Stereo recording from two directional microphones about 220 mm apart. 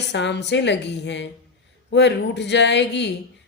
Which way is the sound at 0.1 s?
50° left (ahead or behind).